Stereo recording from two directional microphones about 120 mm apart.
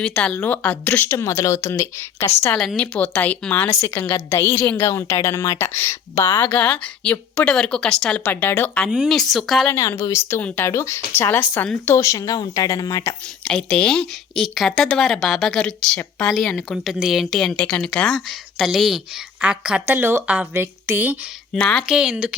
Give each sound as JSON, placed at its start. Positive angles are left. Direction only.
{"t": 0.0, "sound": "a woman's voice", "side_deg": 10}
{"t": 1.2, "sound": "a woman's voice", "side_deg": 25}
{"t": 2.6, "sound": "a woman's voice", "side_deg": 5}
{"t": 6.4, "sound": "a woman's voice", "side_deg": 10}
{"t": 8.9, "sound": "speech", "side_deg": 0}
{"t": 9.6, "sound": "a woman's voice", "side_deg": 25}
{"t": 13.4, "sound": "speech", "side_deg": 10}
{"t": 21.5, "sound": "a woman's voice", "side_deg": 5}
{"t": 21.8, "sound": "speech", "side_deg": -5}